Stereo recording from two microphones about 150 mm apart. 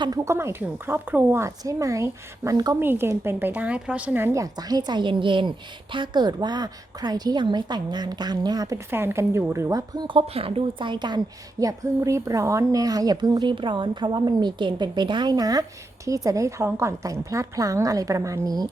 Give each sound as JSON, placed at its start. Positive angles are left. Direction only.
{"t": 0.0, "sound": "a woman's voice", "side_deg": -20}